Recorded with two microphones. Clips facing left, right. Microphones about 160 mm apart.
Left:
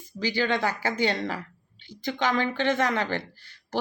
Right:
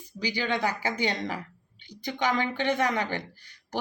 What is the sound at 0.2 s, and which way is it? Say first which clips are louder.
Speech: left 3 dB; 15° right (ahead or behind).